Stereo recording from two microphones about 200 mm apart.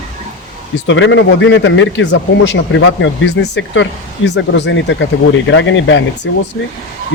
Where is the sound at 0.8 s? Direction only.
70° left (ahead or behind).